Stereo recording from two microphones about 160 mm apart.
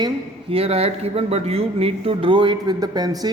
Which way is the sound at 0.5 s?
40° right (ahead or behind).